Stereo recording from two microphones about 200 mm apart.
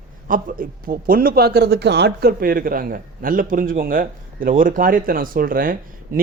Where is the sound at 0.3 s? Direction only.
45° right (ahead or behind).